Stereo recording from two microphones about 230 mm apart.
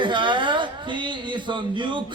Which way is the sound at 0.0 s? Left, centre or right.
Right.